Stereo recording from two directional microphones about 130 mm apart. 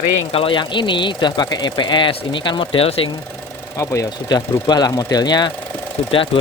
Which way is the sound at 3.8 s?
25° left (ahead or behind).